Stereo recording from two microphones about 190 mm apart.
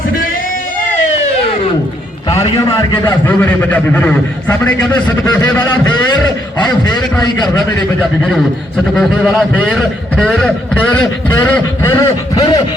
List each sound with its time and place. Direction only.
2.9 s a man's voice: 15° left (ahead or behind)
5.7 s a man's voice: 20° left (ahead or behind)
9.0 s a man's voice: centre (ahead or behind); by 12.6 s 20° left (ahead or behind)